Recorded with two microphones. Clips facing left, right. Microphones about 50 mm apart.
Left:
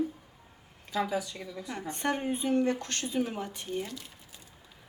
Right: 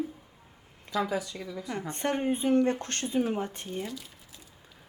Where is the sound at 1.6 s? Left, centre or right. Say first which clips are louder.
Even; right.